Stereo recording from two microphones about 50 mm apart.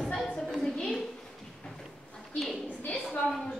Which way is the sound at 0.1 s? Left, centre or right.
Centre.